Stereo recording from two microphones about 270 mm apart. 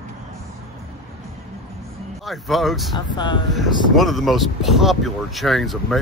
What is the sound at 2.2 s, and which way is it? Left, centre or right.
Speech, centre.